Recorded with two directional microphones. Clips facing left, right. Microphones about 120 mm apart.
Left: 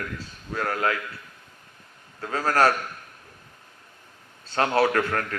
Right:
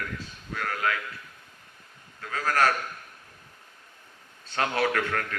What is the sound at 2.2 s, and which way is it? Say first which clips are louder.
Speech: left 4 dB; 35° left (ahead or behind).